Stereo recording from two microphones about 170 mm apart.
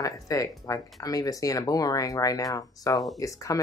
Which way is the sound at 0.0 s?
20° left (ahead or behind).